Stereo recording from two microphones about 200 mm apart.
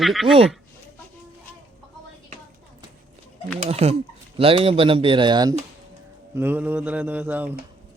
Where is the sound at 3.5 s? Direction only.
35° right (ahead or behind).